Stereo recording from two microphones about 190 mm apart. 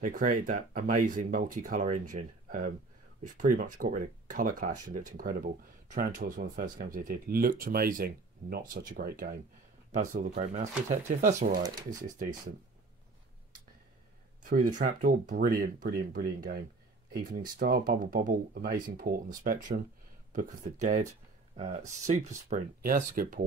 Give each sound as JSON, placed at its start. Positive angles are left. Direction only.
{"t": 0.0, "sound": "speech", "side_deg": -45}
{"t": 14.4, "sound": "speech", "side_deg": -45}